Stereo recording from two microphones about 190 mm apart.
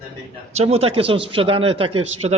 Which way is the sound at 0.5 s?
35° right (ahead or behind).